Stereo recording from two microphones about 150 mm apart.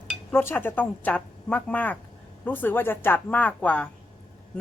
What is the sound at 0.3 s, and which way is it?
Speech, 15° left (ahead or behind).